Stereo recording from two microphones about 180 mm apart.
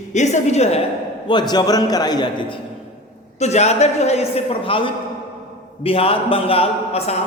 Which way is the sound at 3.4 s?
40° left (ahead or behind).